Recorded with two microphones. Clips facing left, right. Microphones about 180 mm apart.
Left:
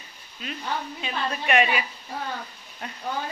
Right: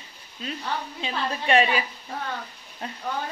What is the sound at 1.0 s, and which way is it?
Speech, 30° right (ahead or behind).